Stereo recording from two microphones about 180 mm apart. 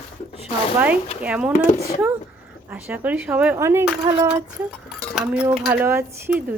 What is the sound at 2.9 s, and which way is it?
Speech, 10° right (ahead or behind).